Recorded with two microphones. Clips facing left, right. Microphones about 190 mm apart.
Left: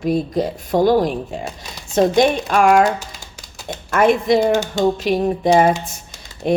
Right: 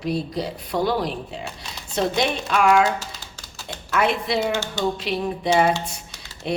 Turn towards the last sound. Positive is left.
turn(degrees=50)  # may be behind; listen again after turning